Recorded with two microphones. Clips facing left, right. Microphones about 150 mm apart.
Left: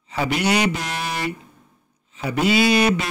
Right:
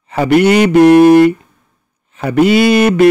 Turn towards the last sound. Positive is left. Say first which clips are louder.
# right 10 dB
turn(degrees=-55)  # may be behind; listen again after turning